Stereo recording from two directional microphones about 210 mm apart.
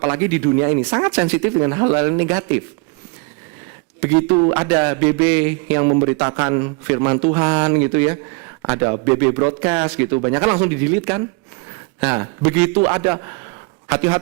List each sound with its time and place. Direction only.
0.0 s speech: 15° right (ahead or behind)
4.5 s a man's voice: 15° right (ahead or behind)